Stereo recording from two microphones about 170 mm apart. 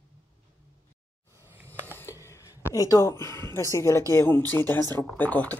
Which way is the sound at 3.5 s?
15° left (ahead or behind).